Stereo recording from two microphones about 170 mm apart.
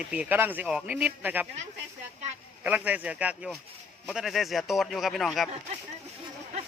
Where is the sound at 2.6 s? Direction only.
10° right (ahead or behind).